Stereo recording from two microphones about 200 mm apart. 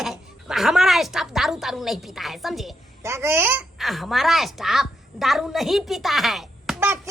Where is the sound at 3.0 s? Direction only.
15° right (ahead or behind).